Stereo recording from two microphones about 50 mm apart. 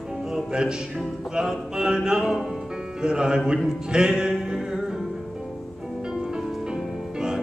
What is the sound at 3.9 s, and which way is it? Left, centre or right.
Music, centre.